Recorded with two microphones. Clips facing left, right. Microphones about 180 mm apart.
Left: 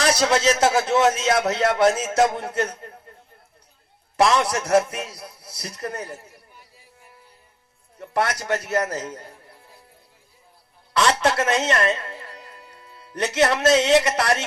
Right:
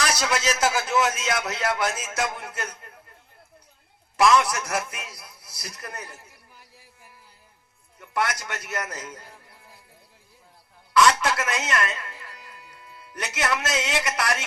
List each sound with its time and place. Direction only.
0.0 s speech: 30° left (ahead or behind)
4.2 s speech: 30° left (ahead or behind)
7.9 s speech: 35° left (ahead or behind)
10.9 s speech: 30° left (ahead or behind)